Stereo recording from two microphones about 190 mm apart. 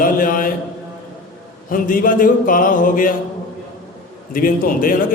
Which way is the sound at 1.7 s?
45° left (ahead or behind).